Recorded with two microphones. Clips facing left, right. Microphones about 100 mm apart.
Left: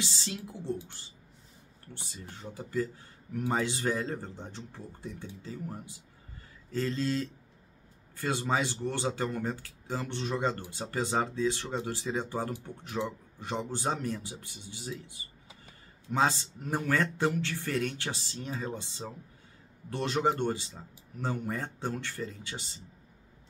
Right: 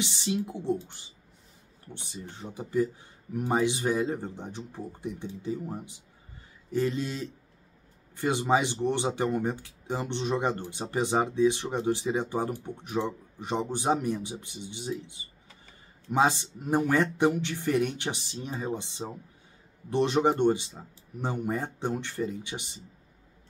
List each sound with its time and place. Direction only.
0.0 s speech: 20° right (ahead or behind)
2.0 s speech: 20° right (ahead or behind)